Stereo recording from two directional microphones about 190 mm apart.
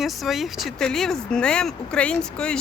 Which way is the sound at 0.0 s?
Centre (ahead or behind).